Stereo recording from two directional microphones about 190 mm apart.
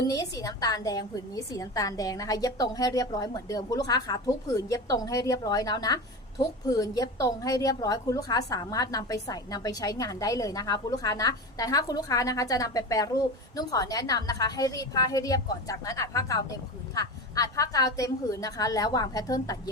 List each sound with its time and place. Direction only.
0.1 s a woman's voice: 20° left (ahead or behind)